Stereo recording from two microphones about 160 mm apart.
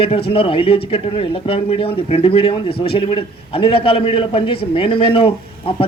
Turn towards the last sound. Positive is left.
turn(degrees=35)  # may be behind; listen again after turning